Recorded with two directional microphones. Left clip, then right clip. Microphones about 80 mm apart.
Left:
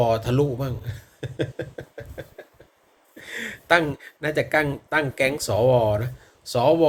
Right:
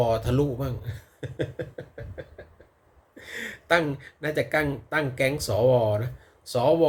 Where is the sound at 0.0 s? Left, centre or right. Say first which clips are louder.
Left 3 dB; right.